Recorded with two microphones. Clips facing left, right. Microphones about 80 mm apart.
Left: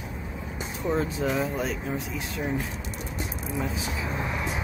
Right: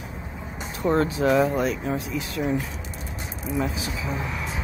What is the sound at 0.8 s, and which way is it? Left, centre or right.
Speech, right.